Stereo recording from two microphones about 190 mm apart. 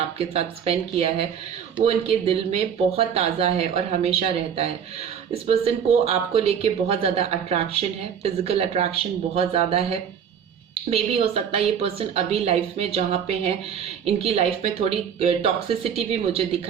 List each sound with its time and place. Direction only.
0.2 s speech: 30° right (ahead or behind)